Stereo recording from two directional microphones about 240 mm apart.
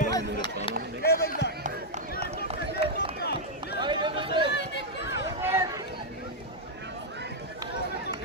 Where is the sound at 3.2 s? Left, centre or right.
Left.